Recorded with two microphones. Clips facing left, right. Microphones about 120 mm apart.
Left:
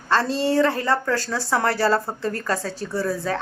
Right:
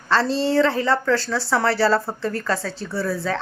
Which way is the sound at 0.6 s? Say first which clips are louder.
Right 2 dB; 45° left (ahead or behind).